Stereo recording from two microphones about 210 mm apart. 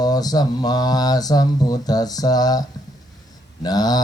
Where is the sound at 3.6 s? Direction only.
20° left (ahead or behind).